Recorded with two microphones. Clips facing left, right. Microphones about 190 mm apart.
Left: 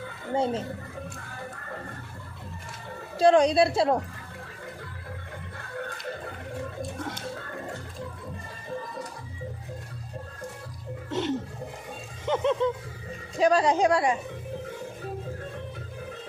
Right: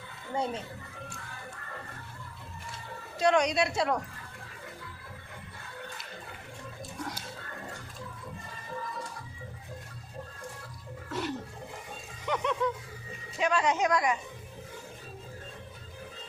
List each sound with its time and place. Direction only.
0.3 s speech: 30° left (ahead or behind)
3.2 s a woman's voice: 30° left (ahead or behind)
11.1 s music: 25° left (ahead or behind)
12.2 s a woman's voice: 30° left (ahead or behind)